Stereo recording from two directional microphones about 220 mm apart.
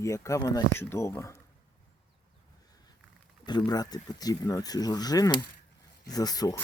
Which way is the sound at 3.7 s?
15° left (ahead or behind).